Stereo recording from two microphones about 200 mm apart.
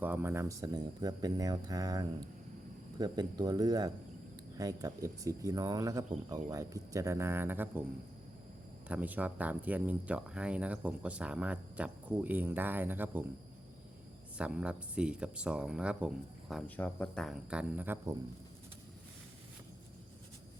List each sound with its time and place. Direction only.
0.0 s speech: 10° right (ahead or behind)
8.9 s speech: 10° right (ahead or behind)
14.3 s speech: 5° right (ahead or behind)